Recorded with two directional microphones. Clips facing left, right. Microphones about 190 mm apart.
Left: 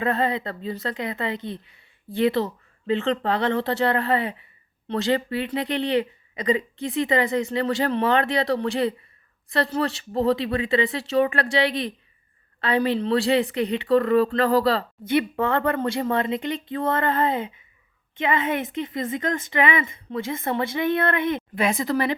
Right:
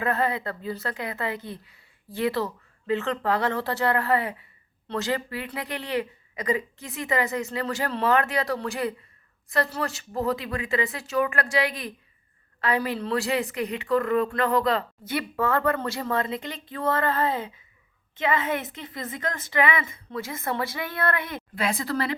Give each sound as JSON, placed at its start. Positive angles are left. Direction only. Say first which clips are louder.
{"t": 0.0, "sound": "a woman's voice", "louder": "left 2 dB", "side_deg": 25}